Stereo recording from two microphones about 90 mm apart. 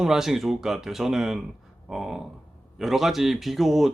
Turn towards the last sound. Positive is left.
turn(degrees=0)  # may be behind; listen again after turning